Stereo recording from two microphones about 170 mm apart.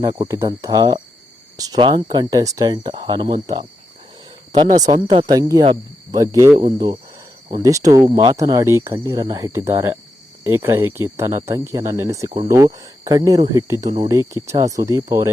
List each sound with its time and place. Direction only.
0.0 s speech: 20° right (ahead or behind)
4.5 s speech: 25° right (ahead or behind)
4.8 s speech: 45° right (ahead or behind)
5.1 s speech: 25° right (ahead or behind)